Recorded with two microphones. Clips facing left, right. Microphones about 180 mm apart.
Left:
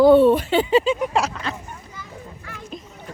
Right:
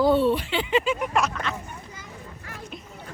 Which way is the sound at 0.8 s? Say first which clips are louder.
Left 3 dB; 30° left (ahead or behind).